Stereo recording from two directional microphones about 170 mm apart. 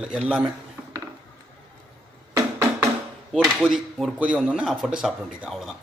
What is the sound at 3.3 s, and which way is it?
Speech, centre (ahead or behind).